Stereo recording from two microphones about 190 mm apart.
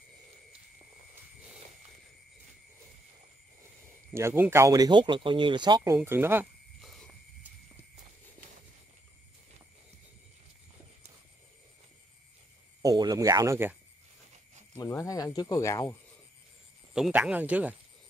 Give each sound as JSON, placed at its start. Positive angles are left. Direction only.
{"t": 4.1, "sound": "speech", "side_deg": -15}
{"t": 5.8, "sound": "speech", "side_deg": -10}
{"t": 12.8, "sound": "speech", "side_deg": -20}
{"t": 14.8, "sound": "speech", "side_deg": 15}
{"t": 16.9, "sound": "speech", "side_deg": -5}